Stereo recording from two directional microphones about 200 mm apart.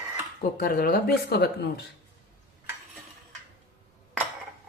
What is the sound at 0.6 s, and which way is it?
Speech, 45° left (ahead or behind).